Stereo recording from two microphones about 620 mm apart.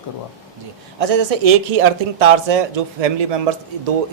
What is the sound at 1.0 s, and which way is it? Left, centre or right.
Speech, right.